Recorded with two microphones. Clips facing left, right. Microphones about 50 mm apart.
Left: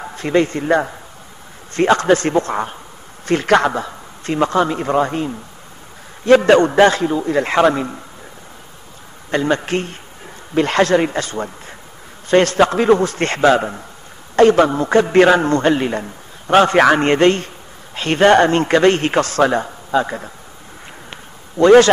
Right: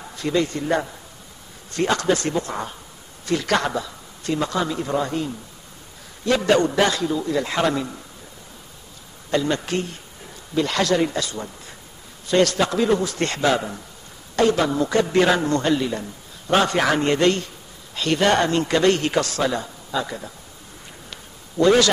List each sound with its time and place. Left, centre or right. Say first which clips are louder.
0.0 s a man's voice: left 6 dB; left
9.3 s a man's voice: left 4 dB; left
21.1 s a sound: left 5 dB; left